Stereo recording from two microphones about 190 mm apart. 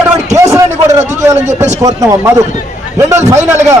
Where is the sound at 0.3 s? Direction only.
15° right (ahead or behind).